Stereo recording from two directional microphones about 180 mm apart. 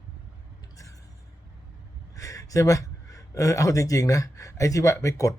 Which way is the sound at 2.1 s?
20° left (ahead or behind).